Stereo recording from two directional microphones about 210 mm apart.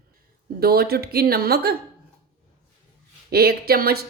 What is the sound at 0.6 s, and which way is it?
A woman's voice, 45° right (ahead or behind).